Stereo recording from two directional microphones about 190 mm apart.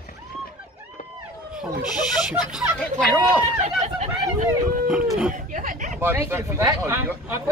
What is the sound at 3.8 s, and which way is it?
Speech, 40° right (ahead or behind).